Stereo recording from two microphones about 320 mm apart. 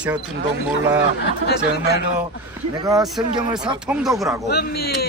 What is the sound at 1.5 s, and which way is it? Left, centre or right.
Speech, left.